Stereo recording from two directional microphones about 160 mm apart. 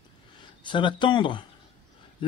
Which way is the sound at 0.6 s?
30° left (ahead or behind).